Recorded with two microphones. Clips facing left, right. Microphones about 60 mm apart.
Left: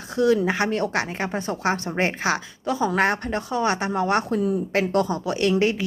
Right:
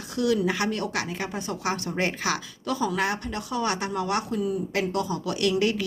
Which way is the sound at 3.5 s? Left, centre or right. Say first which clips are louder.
Left 4 dB; left.